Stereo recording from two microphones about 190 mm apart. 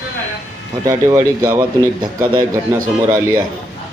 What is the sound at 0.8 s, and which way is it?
A man's voice, 15° right (ahead or behind).